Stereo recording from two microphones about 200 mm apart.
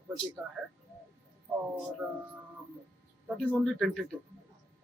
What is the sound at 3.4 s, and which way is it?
Speech, 5° left (ahead or behind).